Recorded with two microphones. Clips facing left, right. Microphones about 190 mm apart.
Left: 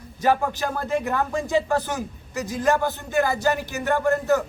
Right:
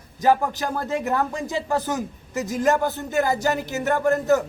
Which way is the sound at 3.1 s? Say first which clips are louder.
Even; 40° right (ahead or behind).